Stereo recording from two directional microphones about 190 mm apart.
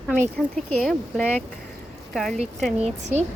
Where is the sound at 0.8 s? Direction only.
Centre (ahead or behind).